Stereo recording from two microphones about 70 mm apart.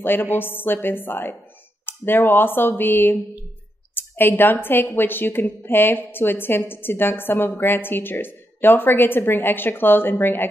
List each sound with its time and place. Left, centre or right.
0.0 s a woman's voice: left